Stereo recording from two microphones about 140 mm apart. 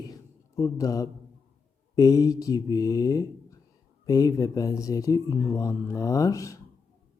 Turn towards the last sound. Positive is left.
turn(degrees=25)  # may be behind; listen again after turning